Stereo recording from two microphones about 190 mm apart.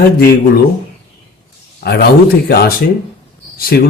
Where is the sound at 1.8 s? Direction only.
60° left (ahead or behind).